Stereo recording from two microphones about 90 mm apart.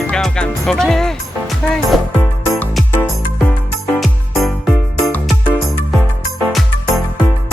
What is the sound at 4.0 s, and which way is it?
Music, centre (ahead or behind).